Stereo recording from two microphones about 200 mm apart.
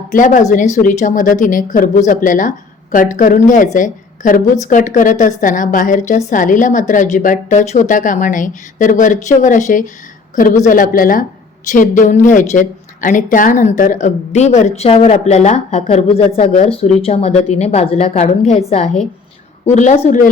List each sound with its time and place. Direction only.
0.1 s a woman's voice: 40° left (ahead or behind)